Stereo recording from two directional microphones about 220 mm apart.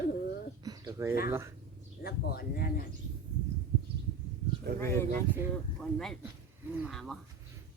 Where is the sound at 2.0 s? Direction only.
45° left (ahead or behind).